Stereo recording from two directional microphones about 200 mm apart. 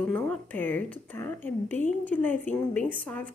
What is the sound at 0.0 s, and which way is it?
A woman's voice, 5° left (ahead or behind).